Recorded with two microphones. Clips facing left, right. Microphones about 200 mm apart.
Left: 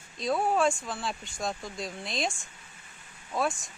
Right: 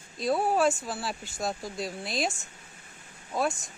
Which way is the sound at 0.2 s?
5° right (ahead or behind).